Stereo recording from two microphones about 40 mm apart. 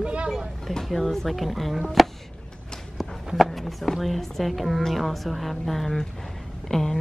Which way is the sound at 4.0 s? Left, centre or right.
Centre.